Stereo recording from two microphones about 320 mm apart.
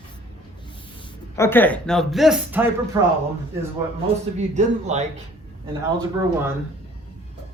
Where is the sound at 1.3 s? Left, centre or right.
Centre.